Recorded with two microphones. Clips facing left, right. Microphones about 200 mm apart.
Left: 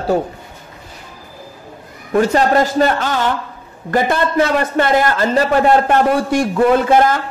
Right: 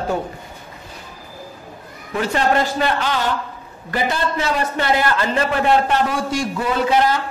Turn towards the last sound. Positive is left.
turn(degrees=50)  # may be behind; listen again after turning